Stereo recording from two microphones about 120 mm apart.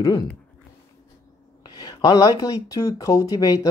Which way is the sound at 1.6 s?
35° left (ahead or behind).